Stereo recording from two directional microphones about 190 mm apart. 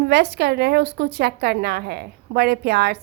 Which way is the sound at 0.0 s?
60° right (ahead or behind).